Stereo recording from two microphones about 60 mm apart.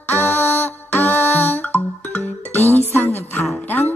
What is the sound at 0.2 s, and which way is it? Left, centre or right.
Music, left.